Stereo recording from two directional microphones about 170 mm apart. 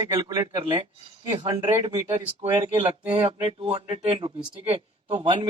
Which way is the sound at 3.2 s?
35° right (ahead or behind).